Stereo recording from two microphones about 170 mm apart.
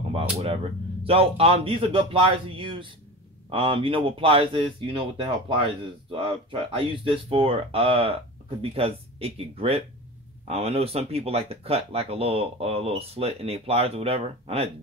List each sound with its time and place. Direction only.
0.1 s speech: 35° right (ahead or behind)